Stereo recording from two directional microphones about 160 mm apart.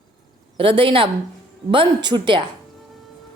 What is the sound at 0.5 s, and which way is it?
A woman's voice, 35° right (ahead or behind).